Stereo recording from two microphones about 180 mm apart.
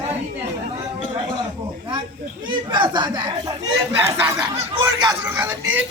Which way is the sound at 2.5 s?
25° right (ahead or behind).